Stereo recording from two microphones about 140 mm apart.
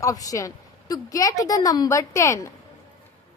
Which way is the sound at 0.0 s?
25° left (ahead or behind).